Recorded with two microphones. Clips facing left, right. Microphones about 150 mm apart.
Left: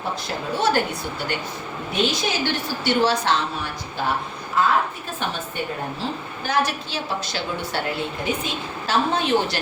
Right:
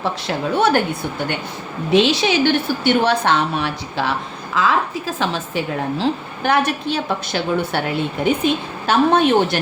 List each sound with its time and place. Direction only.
0.5 s a woman's voice: 60° right (ahead or behind)
1.9 s a woman's voice: 80° right; by 9.6 s 55° right (ahead or behind)